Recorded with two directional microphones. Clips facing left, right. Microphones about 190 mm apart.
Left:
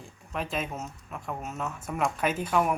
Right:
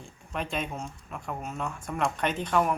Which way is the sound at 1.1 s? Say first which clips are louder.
Even; centre (ahead or behind).